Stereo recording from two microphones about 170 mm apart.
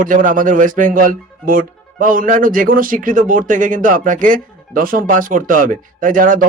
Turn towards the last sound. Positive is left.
turn(degrees=-55)  # may be behind; listen again after turning